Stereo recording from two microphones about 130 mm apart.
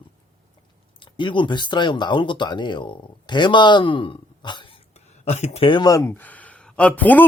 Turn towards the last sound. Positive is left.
turn(degrees=10)  # may be behind; listen again after turning